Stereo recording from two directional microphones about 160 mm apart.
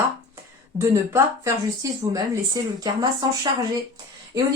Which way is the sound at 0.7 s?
15° right (ahead or behind).